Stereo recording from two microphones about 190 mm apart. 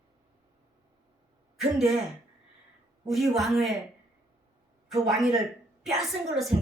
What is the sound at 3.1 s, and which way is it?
Speech, centre (ahead or behind).